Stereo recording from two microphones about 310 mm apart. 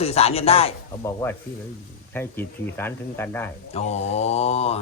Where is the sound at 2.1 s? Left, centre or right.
Centre.